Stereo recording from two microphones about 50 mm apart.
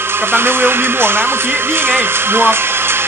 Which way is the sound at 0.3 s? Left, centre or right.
Right.